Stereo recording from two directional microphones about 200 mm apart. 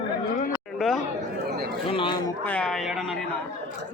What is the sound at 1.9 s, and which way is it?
Speech, 25° left (ahead or behind).